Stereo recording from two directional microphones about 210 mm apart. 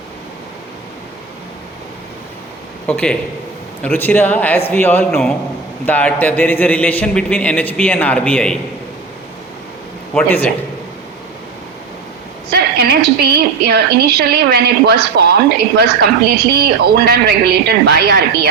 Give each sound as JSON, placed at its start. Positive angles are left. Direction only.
{"t": 2.8, "sound": "a man's voice", "side_deg": 5}
{"t": 10.2, "sound": "a man's voice", "side_deg": 5}
{"t": 12.5, "sound": "a woman's voice", "side_deg": -50}